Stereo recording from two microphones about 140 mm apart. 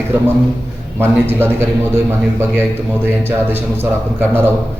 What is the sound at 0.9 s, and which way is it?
A man's voice, 15° right (ahead or behind).